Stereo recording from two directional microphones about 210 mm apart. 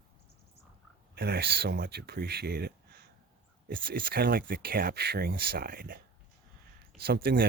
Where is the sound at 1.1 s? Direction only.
45° right (ahead or behind).